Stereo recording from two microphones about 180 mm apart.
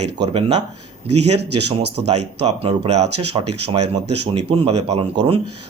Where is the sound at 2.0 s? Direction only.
35° right (ahead or behind).